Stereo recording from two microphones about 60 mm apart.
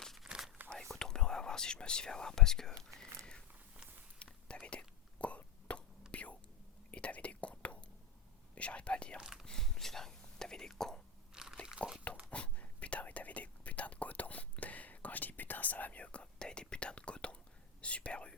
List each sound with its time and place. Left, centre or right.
0.2 s a sound: centre
0.7 s whispering: centre
4.4 s whispering: centre
5.4 s a sound: left
6.1 s whispering: left
9.2 s whispering: centre
9.5 s whispering: centre
11.3 s crunch: centre
11.8 s a sound: left
12.3 s whispering: left